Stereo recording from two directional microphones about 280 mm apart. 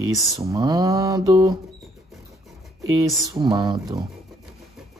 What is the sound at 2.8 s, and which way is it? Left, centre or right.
Speech, centre.